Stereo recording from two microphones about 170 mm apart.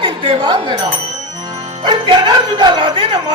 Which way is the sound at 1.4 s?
25° right (ahead or behind).